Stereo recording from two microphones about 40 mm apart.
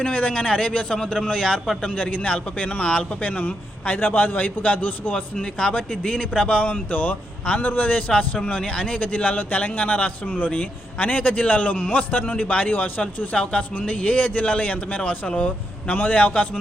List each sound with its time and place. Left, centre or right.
0.0 s a man's voice: left
1.9 s a man's voice: left
5.1 s a man's voice: left
6.6 s speech: left
13.3 s speech: left